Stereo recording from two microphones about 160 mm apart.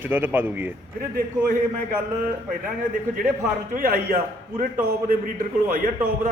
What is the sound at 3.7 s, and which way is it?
Speech, 60° right (ahead or behind).